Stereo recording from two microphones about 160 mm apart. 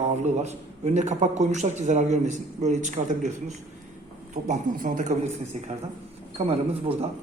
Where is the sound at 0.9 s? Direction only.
45° right (ahead or behind).